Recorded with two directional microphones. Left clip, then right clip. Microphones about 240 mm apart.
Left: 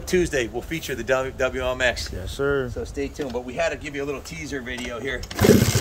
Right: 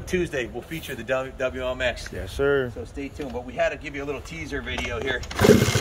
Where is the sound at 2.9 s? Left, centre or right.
Centre.